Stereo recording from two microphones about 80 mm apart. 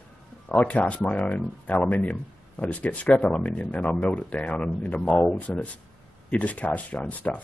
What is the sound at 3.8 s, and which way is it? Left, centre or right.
Speech, centre.